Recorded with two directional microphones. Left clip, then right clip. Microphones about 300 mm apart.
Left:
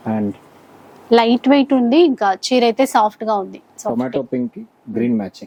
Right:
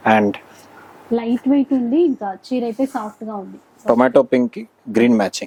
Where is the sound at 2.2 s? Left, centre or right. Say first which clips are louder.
Left 8 dB; centre.